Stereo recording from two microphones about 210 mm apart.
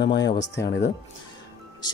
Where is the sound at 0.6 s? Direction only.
15° left (ahead or behind).